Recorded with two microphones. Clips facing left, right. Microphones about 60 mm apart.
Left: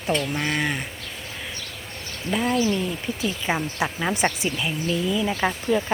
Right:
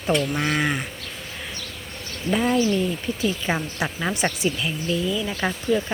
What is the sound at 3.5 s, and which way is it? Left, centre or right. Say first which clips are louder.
Speech: left 2 dB; centre.